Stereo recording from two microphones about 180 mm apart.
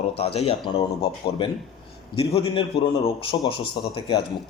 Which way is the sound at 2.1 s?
30° left (ahead or behind).